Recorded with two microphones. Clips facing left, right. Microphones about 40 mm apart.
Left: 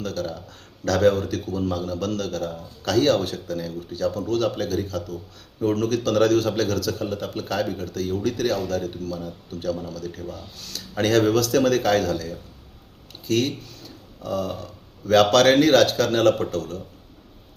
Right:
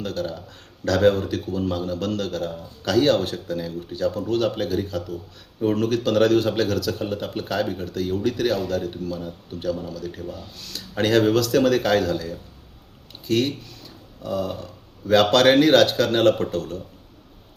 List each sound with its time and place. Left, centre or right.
0.0 s a man's voice: centre
13.8 s a sound: centre
14.6 s a man's voice: centre